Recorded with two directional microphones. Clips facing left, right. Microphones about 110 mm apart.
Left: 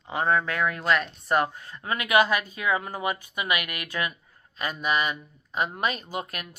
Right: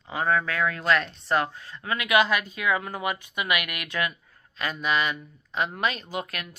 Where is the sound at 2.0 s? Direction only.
40° left (ahead or behind).